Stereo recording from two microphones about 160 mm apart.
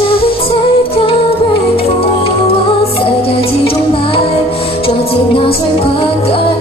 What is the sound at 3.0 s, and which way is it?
Music, 35° left (ahead or behind).